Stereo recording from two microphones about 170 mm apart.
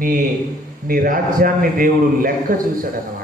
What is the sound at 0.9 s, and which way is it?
A man's voice, 55° right (ahead or behind).